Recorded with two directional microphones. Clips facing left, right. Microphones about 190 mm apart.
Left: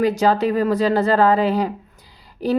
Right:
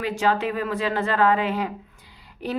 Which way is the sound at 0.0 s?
40° left (ahead or behind).